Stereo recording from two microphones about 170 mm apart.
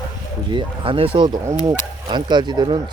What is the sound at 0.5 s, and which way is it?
Speech, 30° right (ahead or behind).